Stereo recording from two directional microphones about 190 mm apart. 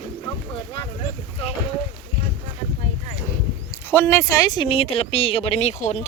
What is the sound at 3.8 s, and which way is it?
Speech, 10° left (ahead or behind).